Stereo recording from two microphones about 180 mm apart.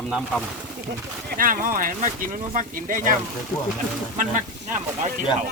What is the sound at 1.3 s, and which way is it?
Speech, 50° right (ahead or behind).